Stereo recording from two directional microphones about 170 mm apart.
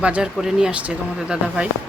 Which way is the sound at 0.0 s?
5° right (ahead or behind).